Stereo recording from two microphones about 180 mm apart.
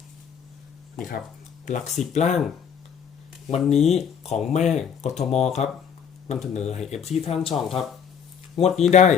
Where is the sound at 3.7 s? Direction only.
35° left (ahead or behind).